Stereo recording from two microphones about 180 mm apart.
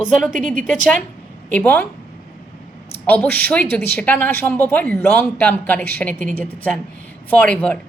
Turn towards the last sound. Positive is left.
turn(degrees=5)  # may be behind; listen again after turning